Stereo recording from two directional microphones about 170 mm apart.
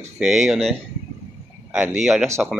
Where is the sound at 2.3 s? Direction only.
15° right (ahead or behind).